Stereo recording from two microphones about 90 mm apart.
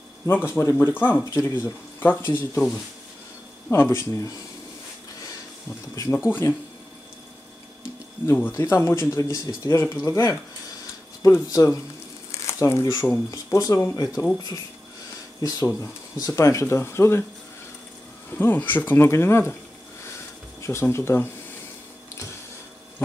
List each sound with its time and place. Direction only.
0.3 s speech: 25° left (ahead or behind)
3.7 s speech: 30° left (ahead or behind)
6.2 s speech: 30° left (ahead or behind)
8.3 s speech: 25° left (ahead or behind)
13.3 s speech: 40° left (ahead or behind)
15.4 s speech: 40° left (ahead or behind)
18.3 s speech: 20° left (ahead or behind)
20.6 s speech: 30° left (ahead or behind)